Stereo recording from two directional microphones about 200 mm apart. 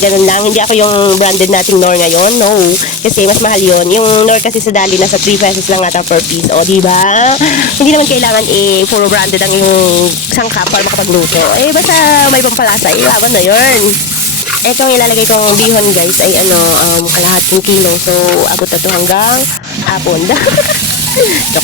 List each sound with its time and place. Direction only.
0.0 s speech: 40° left (ahead or behind)
1.5 s speech: 40° left (ahead or behind)
9.0 s a sound: 55° left (ahead or behind)
11.9 s speech: 50° left (ahead or behind)
14.8 s speech: 45° left (ahead or behind)
19.1 s speech: 45° left (ahead or behind)